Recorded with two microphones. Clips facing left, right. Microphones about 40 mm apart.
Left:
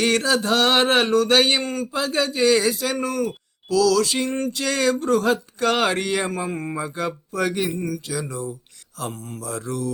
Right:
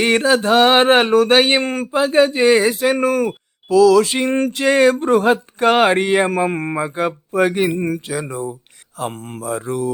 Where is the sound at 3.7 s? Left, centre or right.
Right.